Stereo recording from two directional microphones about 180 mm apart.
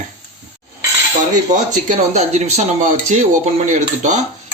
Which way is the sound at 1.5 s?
40° right (ahead or behind).